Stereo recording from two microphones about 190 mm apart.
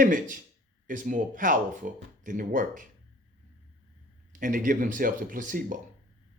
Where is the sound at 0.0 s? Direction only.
45° right (ahead or behind).